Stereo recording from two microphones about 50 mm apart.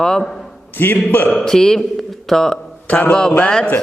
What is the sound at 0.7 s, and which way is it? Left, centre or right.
Speech, left.